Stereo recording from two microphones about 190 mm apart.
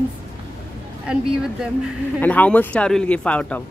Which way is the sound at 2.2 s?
10° left (ahead or behind).